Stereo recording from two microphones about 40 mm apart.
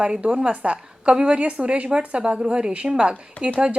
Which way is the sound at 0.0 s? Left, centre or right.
Right.